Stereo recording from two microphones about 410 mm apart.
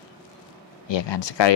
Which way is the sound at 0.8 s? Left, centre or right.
Left.